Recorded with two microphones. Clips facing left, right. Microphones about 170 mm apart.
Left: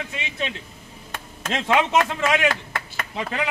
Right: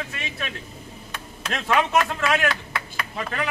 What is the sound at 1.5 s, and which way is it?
A man's voice, 20° left (ahead or behind).